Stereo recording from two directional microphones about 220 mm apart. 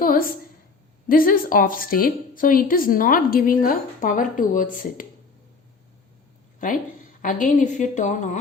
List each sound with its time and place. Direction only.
1.0 s a woman's voice: 40° left (ahead or behind)
7.2 s a woman's voice: 35° left (ahead or behind)